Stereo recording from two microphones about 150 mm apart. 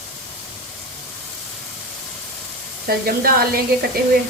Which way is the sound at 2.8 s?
85° right.